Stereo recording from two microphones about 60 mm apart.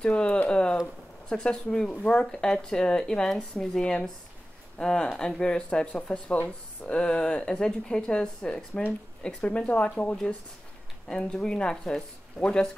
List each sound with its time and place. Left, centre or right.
0.0 s speech: centre